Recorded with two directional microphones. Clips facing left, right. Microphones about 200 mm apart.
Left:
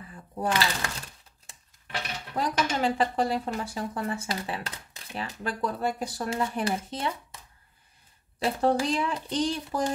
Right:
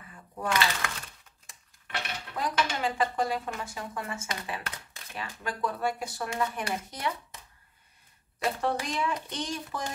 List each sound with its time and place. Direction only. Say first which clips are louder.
0.4 s a sound: left 2 dB; 35° left (ahead or behind)
2.3 s a woman's voice: left 3 dB; 35° left (ahead or behind)
8.4 s a woman's voice: left 5 dB; 30° left (ahead or behind)